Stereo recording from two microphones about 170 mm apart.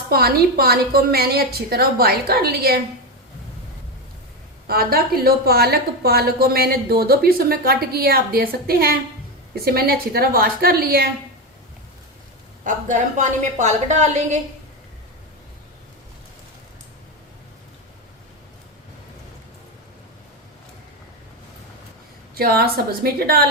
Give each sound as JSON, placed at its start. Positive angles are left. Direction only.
{"t": 0.1, "sound": "a woman's voice", "side_deg": -65}
{"t": 4.6, "sound": "a woman's voice", "side_deg": -60}
{"t": 12.6, "sound": "a woman's voice", "side_deg": -50}
{"t": 22.4, "sound": "a woman's voice", "side_deg": -65}